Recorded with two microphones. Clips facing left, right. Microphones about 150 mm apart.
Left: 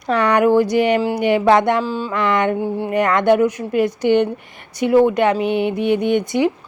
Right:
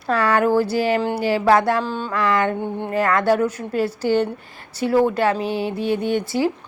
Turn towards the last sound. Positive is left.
turn(degrees=20)  # may be behind; listen again after turning